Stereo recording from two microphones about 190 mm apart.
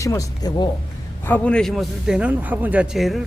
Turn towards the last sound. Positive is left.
turn(degrees=0)  # may be behind; listen again after turning